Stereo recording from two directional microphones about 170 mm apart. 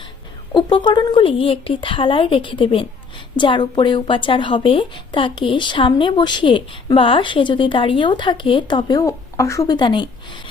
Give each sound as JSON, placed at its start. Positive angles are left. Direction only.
{"t": 0.5, "sound": "a woman's voice", "side_deg": 30}